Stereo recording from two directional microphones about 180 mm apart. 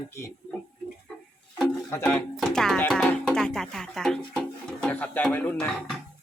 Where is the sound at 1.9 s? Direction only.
10° left (ahead or behind).